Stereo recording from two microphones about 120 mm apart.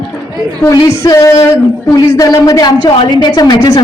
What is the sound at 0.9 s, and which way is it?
A woman's voice, 25° left (ahead or behind).